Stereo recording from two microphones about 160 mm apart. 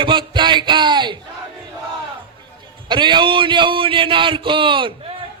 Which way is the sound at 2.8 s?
30° right (ahead or behind).